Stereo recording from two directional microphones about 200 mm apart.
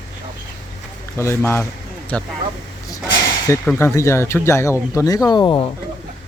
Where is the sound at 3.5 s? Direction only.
15° left (ahead or behind).